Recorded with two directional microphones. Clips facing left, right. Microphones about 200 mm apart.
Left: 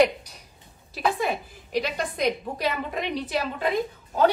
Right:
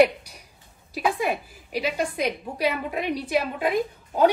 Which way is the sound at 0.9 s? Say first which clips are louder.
Right 1 dB; 10° right (ahead or behind).